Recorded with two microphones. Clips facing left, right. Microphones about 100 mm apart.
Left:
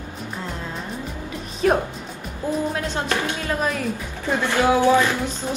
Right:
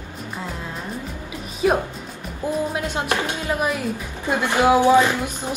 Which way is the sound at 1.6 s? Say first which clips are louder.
Even; 10° right (ahead or behind).